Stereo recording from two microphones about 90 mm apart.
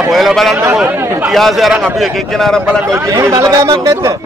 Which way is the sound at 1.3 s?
Centre (ahead or behind).